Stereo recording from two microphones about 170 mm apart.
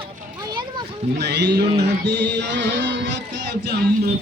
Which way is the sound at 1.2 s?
80° right.